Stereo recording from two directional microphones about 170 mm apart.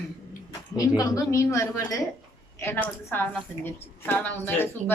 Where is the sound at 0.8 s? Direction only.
20° left (ahead or behind).